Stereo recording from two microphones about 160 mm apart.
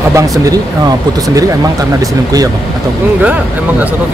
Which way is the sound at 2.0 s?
20° right (ahead or behind).